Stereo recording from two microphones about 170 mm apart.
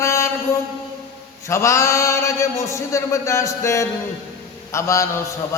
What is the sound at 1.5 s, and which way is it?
A man's voice, 15° left (ahead or behind).